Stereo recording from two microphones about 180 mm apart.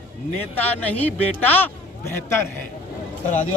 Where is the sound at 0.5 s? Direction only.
10° left (ahead or behind).